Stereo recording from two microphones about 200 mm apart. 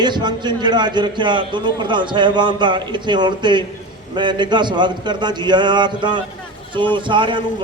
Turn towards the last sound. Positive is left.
turn(degrees=-25)  # may be behind; listen again after turning